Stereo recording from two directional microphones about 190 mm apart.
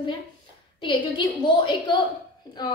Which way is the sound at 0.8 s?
25° left (ahead or behind).